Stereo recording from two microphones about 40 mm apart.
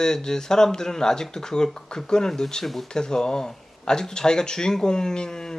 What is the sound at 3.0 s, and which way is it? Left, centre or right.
Speech, centre.